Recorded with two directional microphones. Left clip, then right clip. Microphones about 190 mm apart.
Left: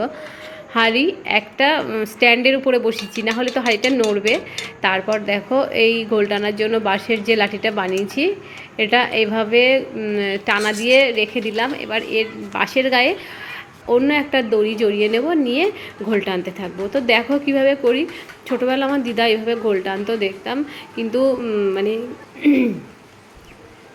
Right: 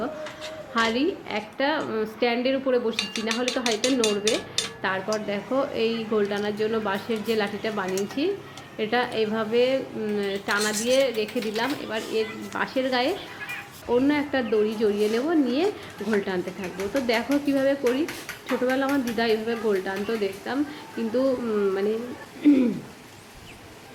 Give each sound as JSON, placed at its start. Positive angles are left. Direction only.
{"t": 0.7, "sound": "a woman's voice", "side_deg": 15}
{"t": 2.9, "sound": "dishes", "side_deg": 5}
{"t": 3.6, "sound": "speech", "side_deg": 20}
{"t": 4.3, "sound": "dishes", "side_deg": 5}
{"t": 4.8, "sound": "cutlery", "side_deg": 15}
{"t": 5.2, "sound": "a woman's voice", "side_deg": 15}
{"t": 7.9, "sound": "dishes", "side_deg": 5}
{"t": 8.8, "sound": "a woman's voice", "side_deg": 15}
{"t": 11.3, "sound": "a woman's voice", "side_deg": 5}
{"t": 22.4, "sound": "dishes", "side_deg": 5}